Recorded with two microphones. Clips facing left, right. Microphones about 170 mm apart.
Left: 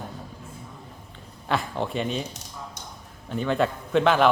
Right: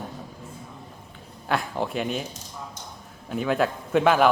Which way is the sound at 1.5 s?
Centre (ahead or behind).